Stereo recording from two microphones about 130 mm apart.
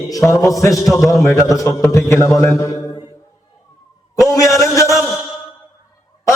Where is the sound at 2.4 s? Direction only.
25° left (ahead or behind).